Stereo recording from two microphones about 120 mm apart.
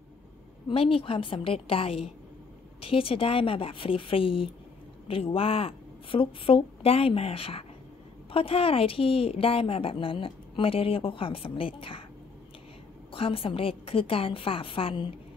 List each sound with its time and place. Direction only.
0.7 s a woman's voice: 50° left (ahead or behind)
13.1 s a woman's voice: 50° left (ahead or behind)